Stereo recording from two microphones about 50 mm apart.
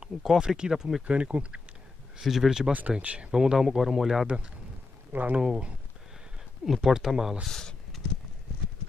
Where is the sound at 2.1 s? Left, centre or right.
Centre.